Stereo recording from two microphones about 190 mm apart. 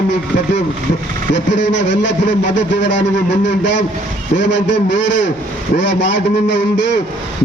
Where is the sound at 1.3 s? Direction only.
70° left (ahead or behind).